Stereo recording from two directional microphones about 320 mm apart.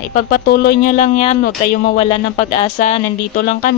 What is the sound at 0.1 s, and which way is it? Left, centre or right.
Speech, left.